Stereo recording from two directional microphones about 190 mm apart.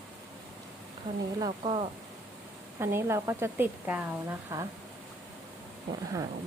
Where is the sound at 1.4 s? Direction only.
25° right (ahead or behind).